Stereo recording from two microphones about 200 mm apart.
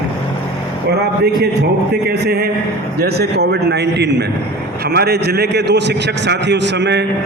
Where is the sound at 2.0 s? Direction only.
55° right (ahead or behind).